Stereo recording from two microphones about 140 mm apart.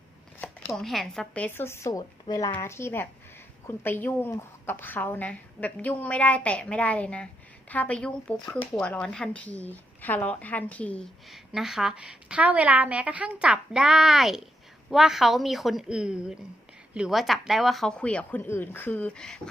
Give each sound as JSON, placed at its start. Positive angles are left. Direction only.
{"t": 0.7, "sound": "a woman's voice", "side_deg": 0}
{"t": 11.3, "sound": "a woman's voice", "side_deg": 0}